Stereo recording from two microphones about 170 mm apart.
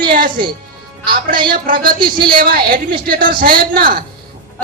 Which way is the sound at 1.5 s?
55° right (ahead or behind).